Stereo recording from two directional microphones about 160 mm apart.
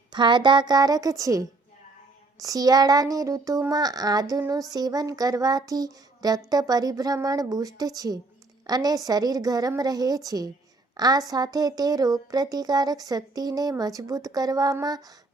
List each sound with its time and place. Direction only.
0.1 s a woman's voice: 30° right (ahead or behind)